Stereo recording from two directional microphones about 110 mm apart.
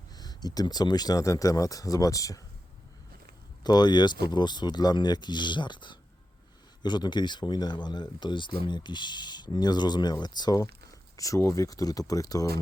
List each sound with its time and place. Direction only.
0.1 s speech: 35° left (ahead or behind)
3.6 s speech: 40° left (ahead or behind)